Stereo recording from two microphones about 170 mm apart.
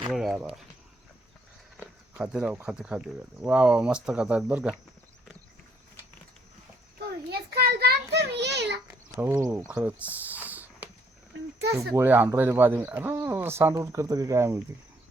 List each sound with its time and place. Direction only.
0.1 s a sound: centre (ahead or behind)
1.7 s speech: 5° right (ahead or behind)
7.3 s a child's voice: 70° right (ahead or behind)
9.1 s speech: 15° right (ahead or behind)
11.9 s speech: 10° right (ahead or behind)